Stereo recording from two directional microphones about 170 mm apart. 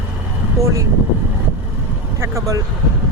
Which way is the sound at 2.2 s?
15° right (ahead or behind).